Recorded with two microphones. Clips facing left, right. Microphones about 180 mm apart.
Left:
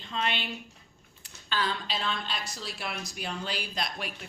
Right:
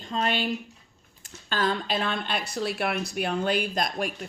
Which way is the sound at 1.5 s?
45° right (ahead or behind).